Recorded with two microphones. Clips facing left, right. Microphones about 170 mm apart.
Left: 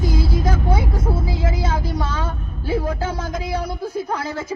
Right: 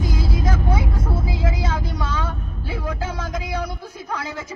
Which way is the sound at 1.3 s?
30° left (ahead or behind).